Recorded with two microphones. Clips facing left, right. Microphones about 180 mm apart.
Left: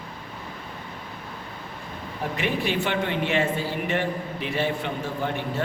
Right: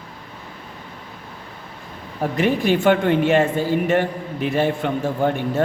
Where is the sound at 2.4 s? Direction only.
45° right (ahead or behind).